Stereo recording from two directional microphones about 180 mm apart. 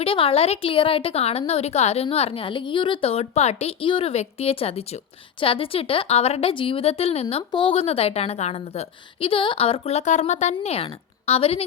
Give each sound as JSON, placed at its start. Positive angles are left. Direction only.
{"t": 0.0, "sound": "a woman's voice", "side_deg": 30}